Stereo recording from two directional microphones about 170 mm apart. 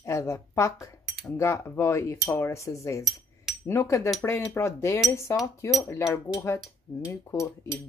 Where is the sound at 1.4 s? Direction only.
15° left (ahead or behind).